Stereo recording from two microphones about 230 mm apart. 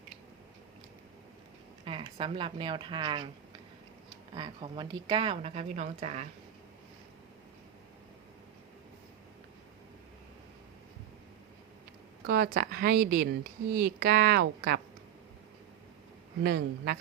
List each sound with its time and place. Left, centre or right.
1.8 s speech: right
4.4 s speech: right
12.2 s a woman's voice: right
16.4 s a woman's voice: right